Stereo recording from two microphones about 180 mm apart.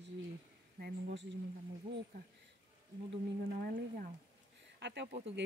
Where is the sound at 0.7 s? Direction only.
60° right (ahead or behind).